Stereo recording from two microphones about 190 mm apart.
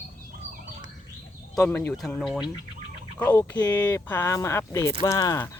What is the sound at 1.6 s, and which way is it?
Speech, 10° left (ahead or behind).